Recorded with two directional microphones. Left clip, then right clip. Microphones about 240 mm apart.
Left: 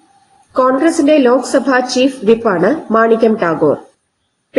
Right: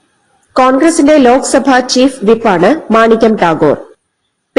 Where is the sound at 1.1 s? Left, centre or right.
Right.